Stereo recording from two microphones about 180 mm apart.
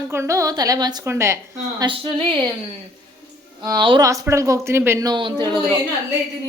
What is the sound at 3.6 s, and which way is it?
Speech, 25° right (ahead or behind).